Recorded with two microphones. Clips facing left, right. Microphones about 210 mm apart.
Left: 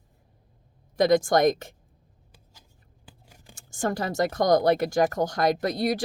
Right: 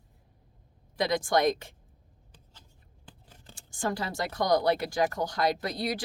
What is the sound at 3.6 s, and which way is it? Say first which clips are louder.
Speech: left 4 dB; 45° left (ahead or behind).